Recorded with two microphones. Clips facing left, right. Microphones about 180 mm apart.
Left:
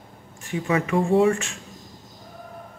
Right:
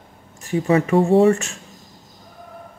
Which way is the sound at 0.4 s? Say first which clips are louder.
Right 6 dB; 35° right (ahead or behind).